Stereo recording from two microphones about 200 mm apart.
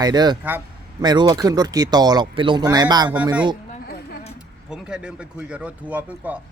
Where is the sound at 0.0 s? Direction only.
20° right (ahead or behind).